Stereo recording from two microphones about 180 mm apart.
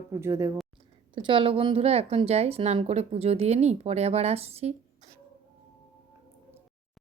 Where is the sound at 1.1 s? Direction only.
30° right (ahead or behind).